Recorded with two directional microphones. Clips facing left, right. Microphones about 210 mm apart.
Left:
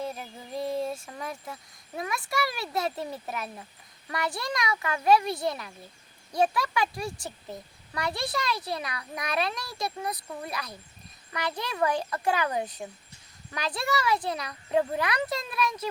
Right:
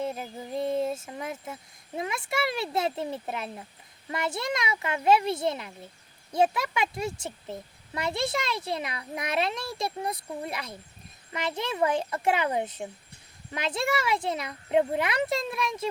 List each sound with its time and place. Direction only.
0.0 s speech: 25° right (ahead or behind)